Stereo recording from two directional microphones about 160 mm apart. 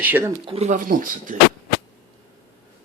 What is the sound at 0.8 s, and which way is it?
Speech, 60° right (ahead or behind).